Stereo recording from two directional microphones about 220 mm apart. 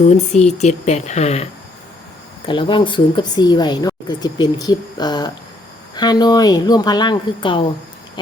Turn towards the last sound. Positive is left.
turn(degrees=20)  # may be behind; listen again after turning